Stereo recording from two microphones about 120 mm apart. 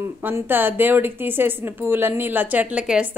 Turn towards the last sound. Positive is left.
turn(degrees=-10)  # may be behind; listen again after turning